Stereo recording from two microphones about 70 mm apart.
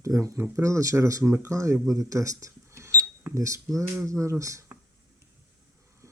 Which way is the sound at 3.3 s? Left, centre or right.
Right.